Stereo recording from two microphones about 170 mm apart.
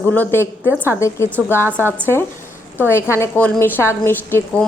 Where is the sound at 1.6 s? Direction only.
15° right (ahead or behind).